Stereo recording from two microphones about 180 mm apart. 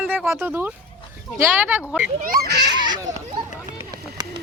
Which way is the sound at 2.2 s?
55° right (ahead or behind).